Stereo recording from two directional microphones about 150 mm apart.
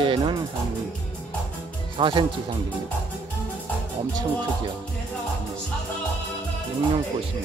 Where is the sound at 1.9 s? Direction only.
35° right (ahead or behind).